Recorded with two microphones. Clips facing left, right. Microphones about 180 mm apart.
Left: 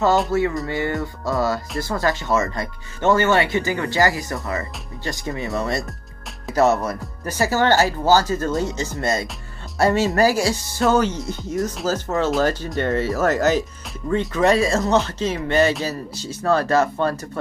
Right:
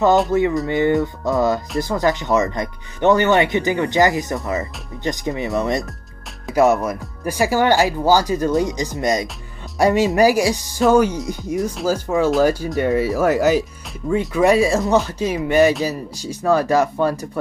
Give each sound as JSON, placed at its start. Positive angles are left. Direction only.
{"t": 0.3, "sound": "speech", "side_deg": -15}